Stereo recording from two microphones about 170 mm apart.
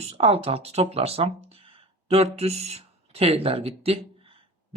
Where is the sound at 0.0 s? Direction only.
35° right (ahead or behind).